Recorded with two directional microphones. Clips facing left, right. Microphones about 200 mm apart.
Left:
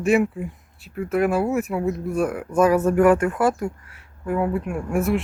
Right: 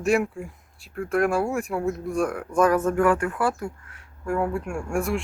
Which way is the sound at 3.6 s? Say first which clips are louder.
Left 5 dB; 5° left (ahead or behind).